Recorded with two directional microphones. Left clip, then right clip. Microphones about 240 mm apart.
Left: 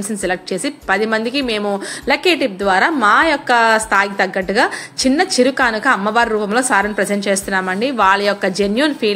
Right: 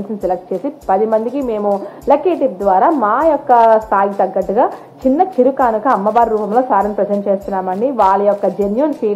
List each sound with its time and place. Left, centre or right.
0.8 s a woman's voice: left
2.6 s a woman's voice: left
5.5 s a woman's voice: left